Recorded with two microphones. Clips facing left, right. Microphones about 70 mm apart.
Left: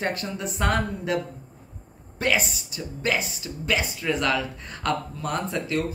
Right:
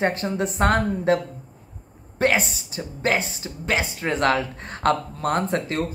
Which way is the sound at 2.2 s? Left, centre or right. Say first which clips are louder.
Right 4 dB; right.